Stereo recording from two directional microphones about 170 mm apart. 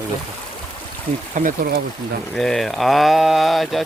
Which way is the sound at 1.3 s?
55° right (ahead or behind).